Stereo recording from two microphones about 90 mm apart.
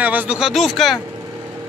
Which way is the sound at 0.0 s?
20° right (ahead or behind).